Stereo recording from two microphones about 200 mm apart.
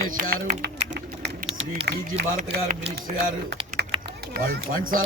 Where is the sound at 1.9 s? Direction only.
50° right (ahead or behind).